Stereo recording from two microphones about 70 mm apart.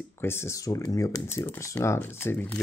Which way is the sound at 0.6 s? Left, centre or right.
Left.